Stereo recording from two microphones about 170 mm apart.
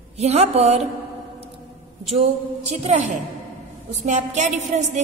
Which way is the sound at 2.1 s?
40° right (ahead or behind).